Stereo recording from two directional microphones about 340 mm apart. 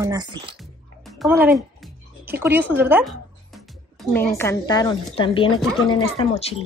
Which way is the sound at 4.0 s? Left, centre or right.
Centre.